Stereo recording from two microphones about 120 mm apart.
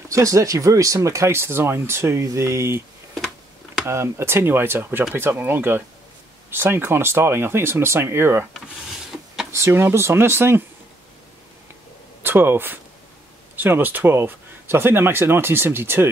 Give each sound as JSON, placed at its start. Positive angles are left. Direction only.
{"t": 0.1, "sound": "speech", "side_deg": -25}
{"t": 3.8, "sound": "speech", "side_deg": -20}
{"t": 9.5, "sound": "speech", "side_deg": -20}
{"t": 12.2, "sound": "speech", "side_deg": -20}